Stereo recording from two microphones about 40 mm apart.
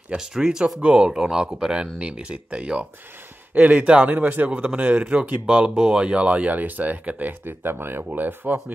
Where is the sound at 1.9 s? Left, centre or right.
Right.